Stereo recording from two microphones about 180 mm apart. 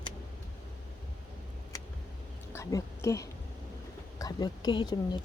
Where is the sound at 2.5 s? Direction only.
15° left (ahead or behind).